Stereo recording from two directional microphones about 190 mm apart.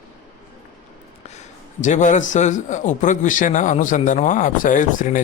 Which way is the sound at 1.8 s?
40° left (ahead or behind).